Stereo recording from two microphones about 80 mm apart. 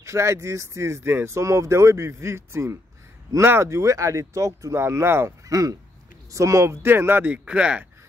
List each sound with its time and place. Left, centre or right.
0.0 s speech: right
4.7 s speech: right
5.5 s speech: right
7.2 s speech: centre